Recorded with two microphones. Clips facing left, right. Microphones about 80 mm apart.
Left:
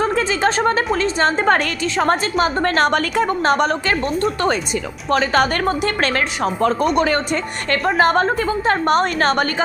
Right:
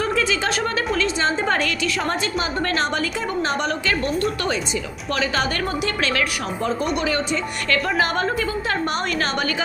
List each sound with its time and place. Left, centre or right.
0.0 s a sound: left
1.2 s a woman's voice: left
7.7 s a woman's voice: left